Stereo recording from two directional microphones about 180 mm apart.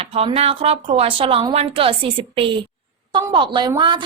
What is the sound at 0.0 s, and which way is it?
A woman's voice, 30° right (ahead or behind).